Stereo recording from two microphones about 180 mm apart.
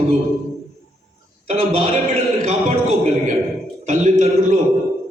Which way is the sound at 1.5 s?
35° right (ahead or behind).